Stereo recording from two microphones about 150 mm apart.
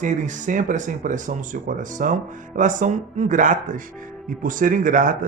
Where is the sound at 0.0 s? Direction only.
55° right (ahead or behind).